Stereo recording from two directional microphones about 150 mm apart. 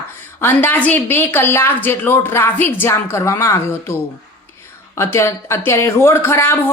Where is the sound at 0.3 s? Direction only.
15° left (ahead or behind).